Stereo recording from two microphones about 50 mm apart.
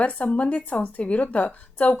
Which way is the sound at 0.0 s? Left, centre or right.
Left.